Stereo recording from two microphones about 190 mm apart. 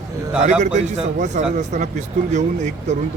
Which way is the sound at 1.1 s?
40° right (ahead or behind).